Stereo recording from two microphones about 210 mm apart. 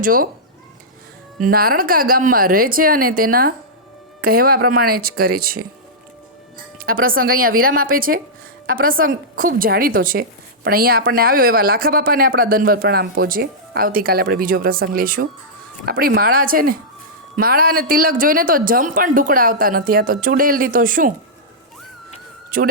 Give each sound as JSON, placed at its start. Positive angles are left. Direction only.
{"t": 0.0, "sound": "speech", "side_deg": -40}
{"t": 1.4, "sound": "speech", "side_deg": -45}
{"t": 6.8, "sound": "speech", "side_deg": -45}
{"t": 22.5, "sound": "speech", "side_deg": -40}